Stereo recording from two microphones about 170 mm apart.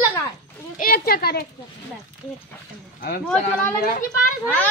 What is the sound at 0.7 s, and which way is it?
Speech, 60° left (ahead or behind).